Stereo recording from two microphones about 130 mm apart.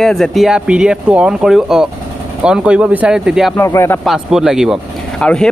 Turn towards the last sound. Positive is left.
turn(degrees=5)  # may be behind; listen again after turning